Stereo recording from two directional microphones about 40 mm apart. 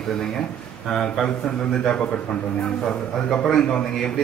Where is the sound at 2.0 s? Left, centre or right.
Left.